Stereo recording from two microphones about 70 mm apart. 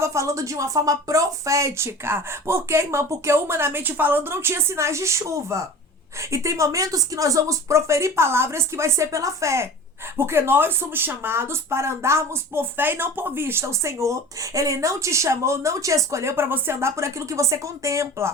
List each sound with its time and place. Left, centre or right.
0.0 s speech: right